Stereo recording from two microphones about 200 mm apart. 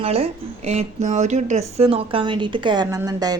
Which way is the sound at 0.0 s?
30° right (ahead or behind).